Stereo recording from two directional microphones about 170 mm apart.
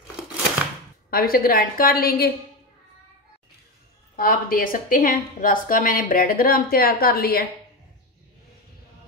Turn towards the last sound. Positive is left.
turn(degrees=65)  # may be behind; listen again after turning